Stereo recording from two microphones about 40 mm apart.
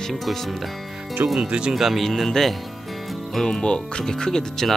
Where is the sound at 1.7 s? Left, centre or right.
Centre.